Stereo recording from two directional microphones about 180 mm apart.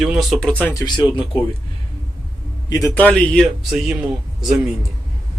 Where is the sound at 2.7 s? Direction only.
15° left (ahead or behind); by 3.9 s centre (ahead or behind).